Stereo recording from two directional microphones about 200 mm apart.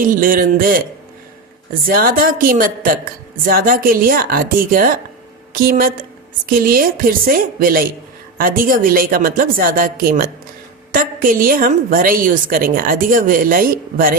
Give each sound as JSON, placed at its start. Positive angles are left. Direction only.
{"t": 0.1, "sound": "a woman's voice", "side_deg": -45}
{"t": 1.9, "sound": "a woman's voice", "side_deg": -45}